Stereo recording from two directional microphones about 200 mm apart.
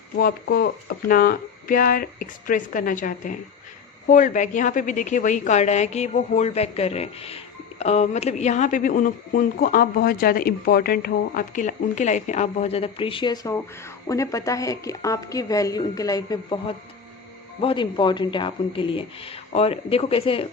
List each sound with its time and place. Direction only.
0.2 s a man's voice: 50° left (ahead or behind); by 20.4 s 30° left (ahead or behind)